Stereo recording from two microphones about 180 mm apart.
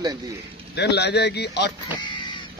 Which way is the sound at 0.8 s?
70° left (ahead or behind).